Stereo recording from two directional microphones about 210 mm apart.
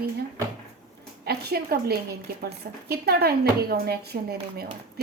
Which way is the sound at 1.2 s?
50° right (ahead or behind).